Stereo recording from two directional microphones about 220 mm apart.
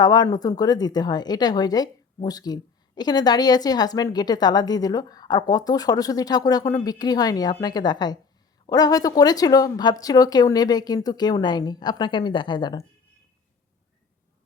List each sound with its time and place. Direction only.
0.0 s speech: 20° left (ahead or behind)